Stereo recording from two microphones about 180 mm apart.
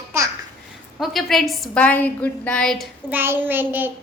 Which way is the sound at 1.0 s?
Centre (ahead or behind).